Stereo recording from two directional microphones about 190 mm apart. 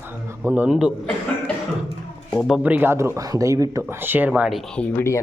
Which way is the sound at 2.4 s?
Centre (ahead or behind).